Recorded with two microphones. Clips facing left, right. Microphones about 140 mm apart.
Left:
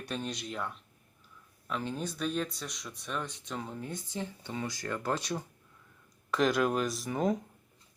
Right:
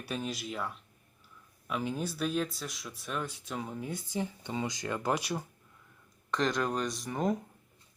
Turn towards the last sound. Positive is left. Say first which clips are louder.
# left 1 dB
turn(degrees=0)  # may be behind; listen again after turning